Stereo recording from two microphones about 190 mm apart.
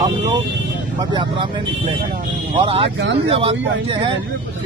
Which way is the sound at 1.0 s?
25° right (ahead or behind).